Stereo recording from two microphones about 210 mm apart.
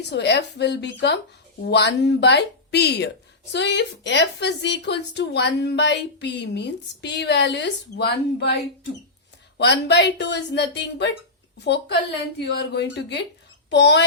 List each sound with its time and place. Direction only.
0.0 s a woman's voice: 55° left (ahead or behind)
9.6 s a woman's voice: 55° left (ahead or behind)